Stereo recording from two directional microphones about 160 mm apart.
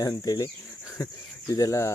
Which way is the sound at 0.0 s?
25° left (ahead or behind).